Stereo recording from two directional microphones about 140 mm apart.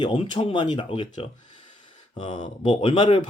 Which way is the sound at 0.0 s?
35° left (ahead or behind).